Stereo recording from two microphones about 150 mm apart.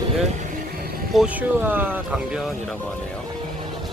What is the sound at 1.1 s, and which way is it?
Speech, 5° right (ahead or behind).